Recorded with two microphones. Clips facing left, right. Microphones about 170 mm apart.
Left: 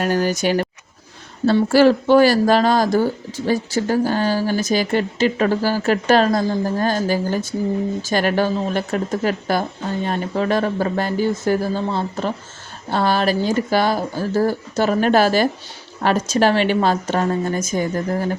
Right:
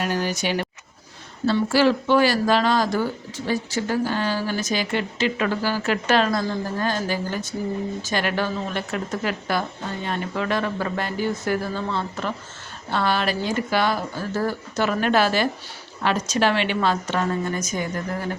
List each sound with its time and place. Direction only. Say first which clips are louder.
0.0 s a woman's voice: left 6 dB; 45° left (ahead or behind)